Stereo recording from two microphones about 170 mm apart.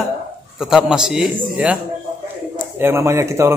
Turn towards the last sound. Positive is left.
turn(degrees=-15)  # may be behind; listen again after turning